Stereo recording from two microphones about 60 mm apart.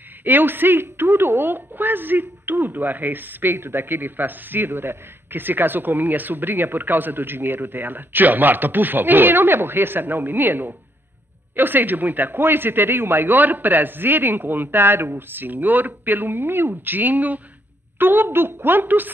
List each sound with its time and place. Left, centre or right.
0.2 s speech: right